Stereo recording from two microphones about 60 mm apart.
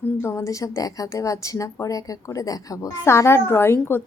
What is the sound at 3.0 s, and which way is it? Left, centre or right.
A woman's voice, left.